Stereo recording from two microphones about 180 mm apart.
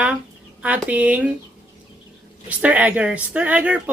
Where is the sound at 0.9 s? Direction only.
10° right (ahead or behind).